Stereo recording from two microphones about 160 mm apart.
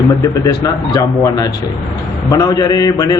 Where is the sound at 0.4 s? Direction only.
20° left (ahead or behind).